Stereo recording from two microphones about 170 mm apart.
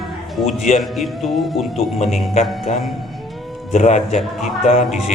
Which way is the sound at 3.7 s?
45° left (ahead or behind).